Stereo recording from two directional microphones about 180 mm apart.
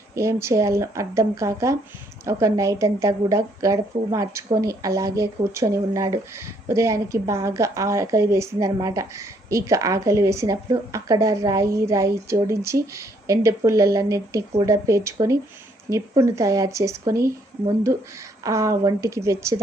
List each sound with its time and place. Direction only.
0.1 s speech: 15° right (ahead or behind)
18.4 s speech: 15° right (ahead or behind)